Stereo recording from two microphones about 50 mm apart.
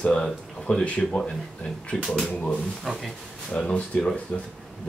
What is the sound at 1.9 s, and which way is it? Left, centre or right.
Speech, centre.